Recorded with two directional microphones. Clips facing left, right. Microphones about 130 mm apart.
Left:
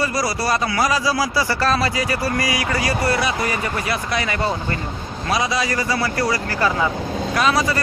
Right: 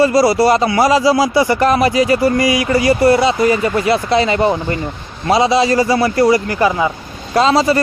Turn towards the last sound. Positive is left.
turn(degrees=-25)  # may be behind; listen again after turning